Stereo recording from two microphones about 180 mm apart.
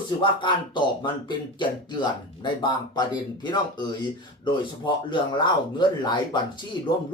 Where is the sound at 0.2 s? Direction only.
25° left (ahead or behind).